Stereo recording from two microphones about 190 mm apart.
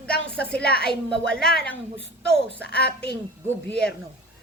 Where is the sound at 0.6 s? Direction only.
55° left (ahead or behind).